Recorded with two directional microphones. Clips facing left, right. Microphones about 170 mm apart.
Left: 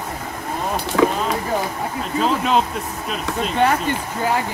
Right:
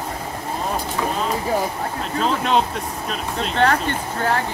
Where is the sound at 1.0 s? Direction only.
90° left.